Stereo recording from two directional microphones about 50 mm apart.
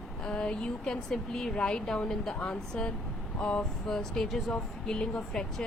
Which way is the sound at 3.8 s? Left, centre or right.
Centre.